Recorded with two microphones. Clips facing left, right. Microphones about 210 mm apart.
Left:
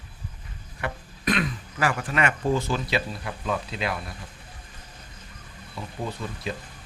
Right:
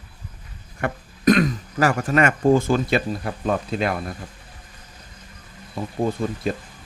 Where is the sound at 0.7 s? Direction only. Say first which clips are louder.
Right 6 dB; 45° right (ahead or behind).